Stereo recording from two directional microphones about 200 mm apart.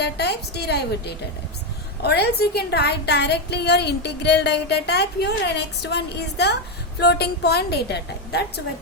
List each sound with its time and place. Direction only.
0.0 s a woman's voice: 55° left (ahead or behind)